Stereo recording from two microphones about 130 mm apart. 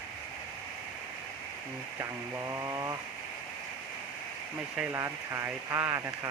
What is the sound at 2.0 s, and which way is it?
Speech, 20° right (ahead or behind).